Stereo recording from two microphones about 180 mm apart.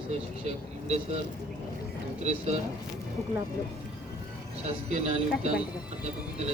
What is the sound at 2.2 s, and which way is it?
Speech, 40° right (ahead or behind).